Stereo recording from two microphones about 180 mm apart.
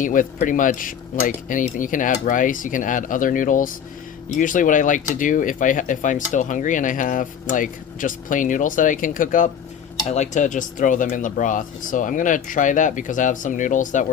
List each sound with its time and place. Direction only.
0.0 s speech: 45° left (ahead or behind)